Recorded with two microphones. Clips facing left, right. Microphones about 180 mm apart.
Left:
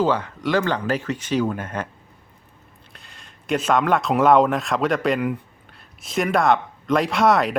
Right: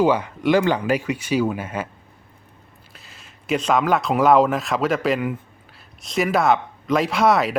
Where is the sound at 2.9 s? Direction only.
Centre (ahead or behind).